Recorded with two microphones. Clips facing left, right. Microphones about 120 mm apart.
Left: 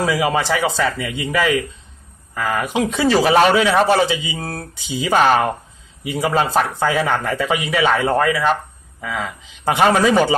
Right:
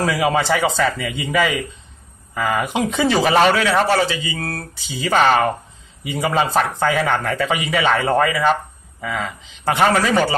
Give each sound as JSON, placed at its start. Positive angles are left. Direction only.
{"t": 0.1, "sound": "a man's voice", "side_deg": 0}
{"t": 9.7, "sound": "speech", "side_deg": 15}